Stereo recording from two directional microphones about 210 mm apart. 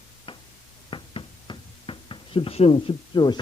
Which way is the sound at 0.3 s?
25° left (ahead or behind).